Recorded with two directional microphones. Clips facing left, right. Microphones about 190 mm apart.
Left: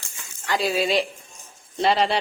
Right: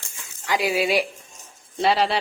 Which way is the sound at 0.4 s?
15° right (ahead or behind).